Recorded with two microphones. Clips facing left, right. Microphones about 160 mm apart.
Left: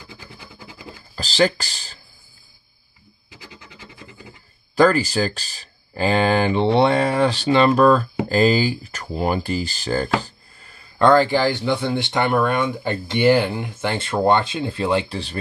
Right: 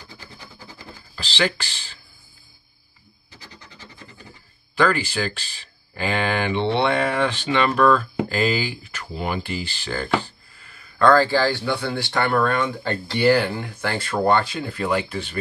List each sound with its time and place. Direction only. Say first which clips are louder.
0.4 s a sound: left 2 dB; 10° left (ahead or behind)
1.1 s speech: left 6 dB; 40° left (ahead or behind)
3.3 s scratch: left 3 dB; 10° left (ahead or behind)
4.7 s speech: left 5 dB; 40° left (ahead or behind)
11.0 s speech: left 1 dB; 20° left (ahead or behind)